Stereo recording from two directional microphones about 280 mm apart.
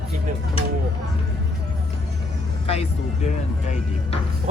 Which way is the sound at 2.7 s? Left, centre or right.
Left.